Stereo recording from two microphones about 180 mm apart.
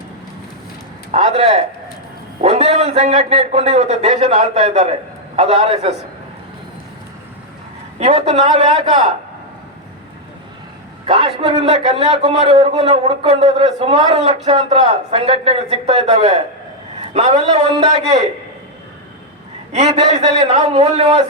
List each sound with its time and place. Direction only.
1.1 s a man's voice: 35° right (ahead or behind)
7.9 s a man's voice: 35° right (ahead or behind)
11.0 s a man's voice: 30° right (ahead or behind)
20.1 s a man's voice: 40° right (ahead or behind)